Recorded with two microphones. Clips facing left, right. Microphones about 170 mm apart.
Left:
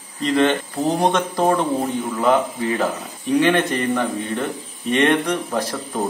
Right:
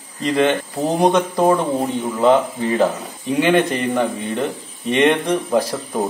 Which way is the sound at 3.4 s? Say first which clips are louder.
Right 5 dB; 10° right (ahead or behind).